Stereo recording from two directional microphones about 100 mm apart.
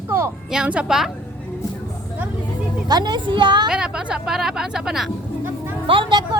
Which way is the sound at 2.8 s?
45° right (ahead or behind).